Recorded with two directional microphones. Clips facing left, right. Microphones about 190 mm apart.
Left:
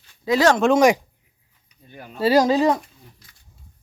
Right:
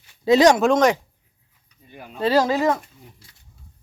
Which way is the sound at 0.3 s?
20° right (ahead or behind).